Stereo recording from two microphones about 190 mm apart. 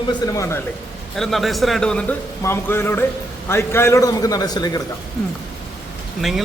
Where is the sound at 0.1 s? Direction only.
15° left (ahead or behind).